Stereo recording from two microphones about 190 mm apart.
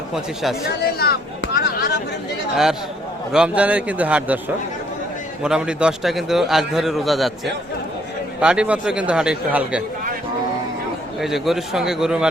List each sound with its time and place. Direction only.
0.9 s a sound: 55° left (ahead or behind)
3.3 s a man's voice: 5° right (ahead or behind)
11.2 s a man's voice: centre (ahead or behind)